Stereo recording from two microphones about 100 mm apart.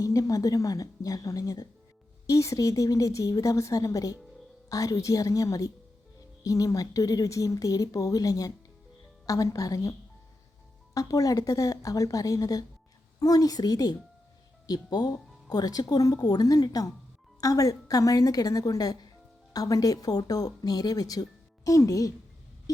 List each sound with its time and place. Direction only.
0.0 s speech: 35° left (ahead or behind)
10.9 s speech: 35° left (ahead or behind)